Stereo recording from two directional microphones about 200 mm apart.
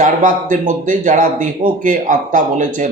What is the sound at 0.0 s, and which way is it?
Speech, 40° right (ahead or behind).